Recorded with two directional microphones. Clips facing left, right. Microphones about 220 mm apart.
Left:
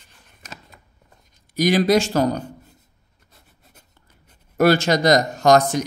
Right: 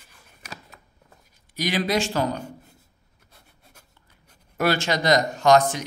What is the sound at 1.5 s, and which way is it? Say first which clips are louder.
Speech: left 7 dB; 45° left (ahead or behind).